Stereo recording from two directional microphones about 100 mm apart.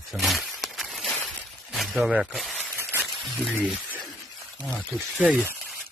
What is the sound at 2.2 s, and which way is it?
Speech, centre (ahead or behind).